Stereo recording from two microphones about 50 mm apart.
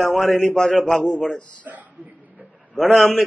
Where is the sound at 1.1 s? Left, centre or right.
Left.